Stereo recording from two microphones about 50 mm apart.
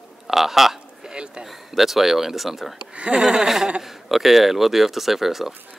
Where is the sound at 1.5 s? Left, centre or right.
Centre.